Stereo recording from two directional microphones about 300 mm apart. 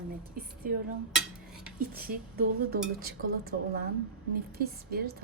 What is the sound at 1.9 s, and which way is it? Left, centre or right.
Dishes, right.